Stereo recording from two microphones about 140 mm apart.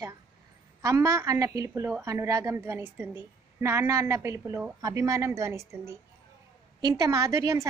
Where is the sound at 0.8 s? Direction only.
20° right (ahead or behind).